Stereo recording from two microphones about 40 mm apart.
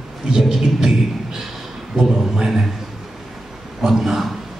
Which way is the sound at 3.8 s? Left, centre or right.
Centre.